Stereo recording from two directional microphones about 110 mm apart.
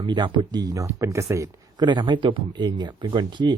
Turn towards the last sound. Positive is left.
turn(degrees=-45)  # may be behind; listen again after turning